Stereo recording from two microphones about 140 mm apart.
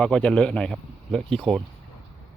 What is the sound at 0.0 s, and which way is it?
Speech, 5° left (ahead or behind).